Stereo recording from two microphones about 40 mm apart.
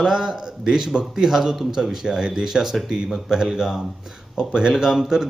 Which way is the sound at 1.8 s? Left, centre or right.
Centre.